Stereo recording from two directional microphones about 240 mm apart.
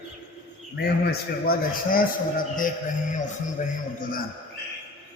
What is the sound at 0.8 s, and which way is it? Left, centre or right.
A man's voice, left.